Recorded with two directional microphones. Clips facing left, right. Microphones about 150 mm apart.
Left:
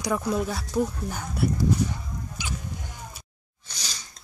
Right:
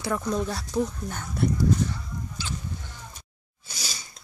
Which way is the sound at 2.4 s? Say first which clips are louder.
Even; 15° left (ahead or behind).